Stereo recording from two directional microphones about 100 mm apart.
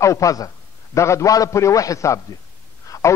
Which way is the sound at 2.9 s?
35° left (ahead or behind).